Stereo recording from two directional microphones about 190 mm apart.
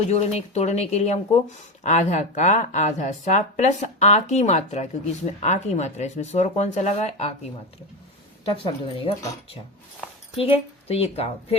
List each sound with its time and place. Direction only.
0.1 s speech: 35° left (ahead or behind)
8.5 s a woman's voice: 30° left (ahead or behind)
10.3 s speech: 30° left (ahead or behind)